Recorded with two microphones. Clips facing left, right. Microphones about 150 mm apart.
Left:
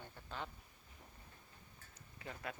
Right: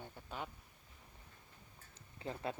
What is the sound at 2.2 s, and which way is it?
Speech, 30° right (ahead or behind).